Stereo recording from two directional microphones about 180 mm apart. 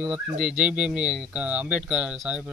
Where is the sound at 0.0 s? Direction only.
5° right (ahead or behind).